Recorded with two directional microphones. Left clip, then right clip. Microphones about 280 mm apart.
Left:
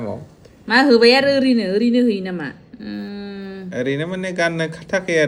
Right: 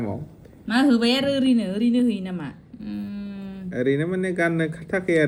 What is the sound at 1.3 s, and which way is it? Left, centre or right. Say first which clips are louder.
Speech: left 5 dB; centre.